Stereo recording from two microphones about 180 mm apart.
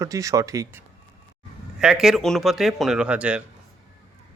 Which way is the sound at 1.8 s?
5° right (ahead or behind).